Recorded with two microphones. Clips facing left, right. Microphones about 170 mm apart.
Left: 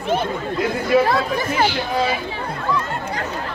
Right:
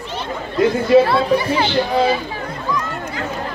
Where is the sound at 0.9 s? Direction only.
25° right (ahead or behind).